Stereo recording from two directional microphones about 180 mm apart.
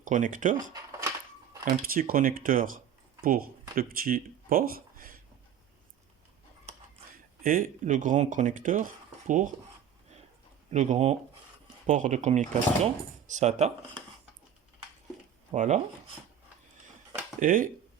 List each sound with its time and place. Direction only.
0.0 s speech: 45° right (ahead or behind)
0.7 s cash register: 20° right (ahead or behind)
1.6 s speech: 50° right (ahead or behind)
7.1 s speech: 50° right (ahead or behind)
10.7 s speech: 40° right (ahead or behind)
15.5 s speech: 40° right (ahead or behind)
17.4 s speech: 50° right (ahead or behind)